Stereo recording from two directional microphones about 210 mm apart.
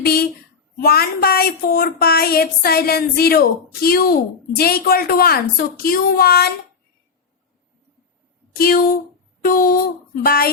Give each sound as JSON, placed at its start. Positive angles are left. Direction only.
{"t": 0.0, "sound": "a sound", "side_deg": 45}
{"t": 0.8, "sound": "speech", "side_deg": 45}
{"t": 8.5, "sound": "speech", "side_deg": 45}